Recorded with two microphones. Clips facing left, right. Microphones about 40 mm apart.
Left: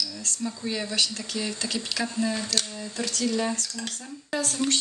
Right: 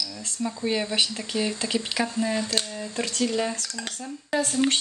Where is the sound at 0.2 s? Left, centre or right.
Right.